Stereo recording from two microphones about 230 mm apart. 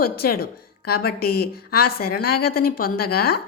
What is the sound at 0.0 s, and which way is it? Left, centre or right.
A woman's voice, left.